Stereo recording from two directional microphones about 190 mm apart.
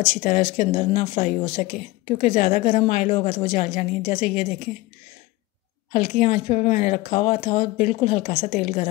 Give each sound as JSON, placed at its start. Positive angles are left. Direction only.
{"t": 0.2, "sound": "speech", "side_deg": 35}
{"t": 5.9, "sound": "speech", "side_deg": 35}